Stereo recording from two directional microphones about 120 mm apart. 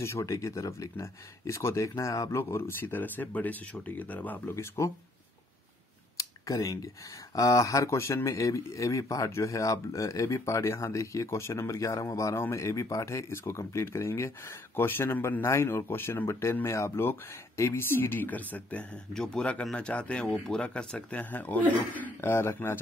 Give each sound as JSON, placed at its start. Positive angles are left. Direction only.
{"t": 0.0, "sound": "speech", "side_deg": 25}
{"t": 6.1, "sound": "a sound", "side_deg": 30}
{"t": 7.3, "sound": "speech", "side_deg": 30}